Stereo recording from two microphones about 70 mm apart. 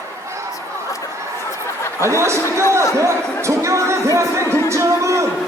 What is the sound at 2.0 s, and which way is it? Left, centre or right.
A man's voice, right.